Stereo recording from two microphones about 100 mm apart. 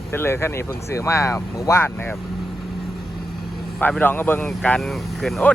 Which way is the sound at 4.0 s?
20° left (ahead or behind).